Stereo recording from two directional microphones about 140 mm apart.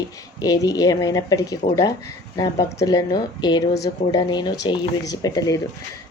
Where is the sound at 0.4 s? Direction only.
25° left (ahead or behind).